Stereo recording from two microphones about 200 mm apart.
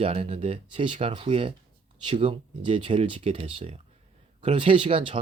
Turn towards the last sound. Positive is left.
turn(degrees=-25)  # may be behind; listen again after turning